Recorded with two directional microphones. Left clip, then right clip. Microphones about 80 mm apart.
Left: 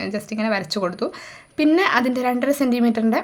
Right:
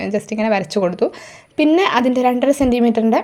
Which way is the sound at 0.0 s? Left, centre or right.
Right.